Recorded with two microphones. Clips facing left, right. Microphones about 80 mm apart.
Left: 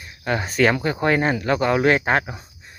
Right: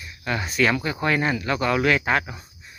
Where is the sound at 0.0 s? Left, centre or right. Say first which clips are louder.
Left 3 dB; left.